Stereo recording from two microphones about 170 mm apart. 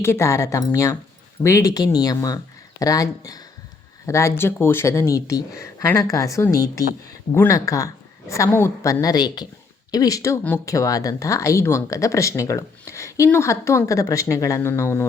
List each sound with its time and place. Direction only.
0.0 s speech: 15° left (ahead or behind)